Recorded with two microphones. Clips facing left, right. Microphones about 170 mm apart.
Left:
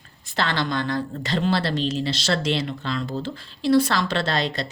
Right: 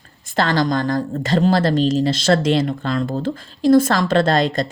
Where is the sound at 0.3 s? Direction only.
40° right (ahead or behind).